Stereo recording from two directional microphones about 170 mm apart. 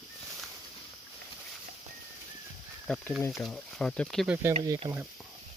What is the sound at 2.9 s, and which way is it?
Speech, 5° left (ahead or behind).